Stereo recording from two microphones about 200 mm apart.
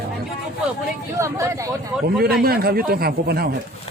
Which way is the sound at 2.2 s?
50° right (ahead or behind).